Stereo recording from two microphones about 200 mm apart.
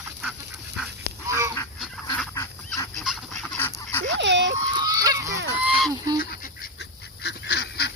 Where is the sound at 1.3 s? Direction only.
15° right (ahead or behind).